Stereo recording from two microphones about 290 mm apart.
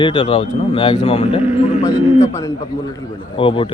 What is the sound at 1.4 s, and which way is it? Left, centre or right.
Speech, centre.